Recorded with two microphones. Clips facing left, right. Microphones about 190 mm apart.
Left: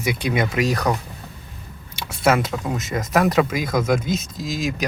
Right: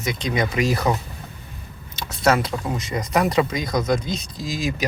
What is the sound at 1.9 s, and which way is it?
Speech, 5° left (ahead or behind).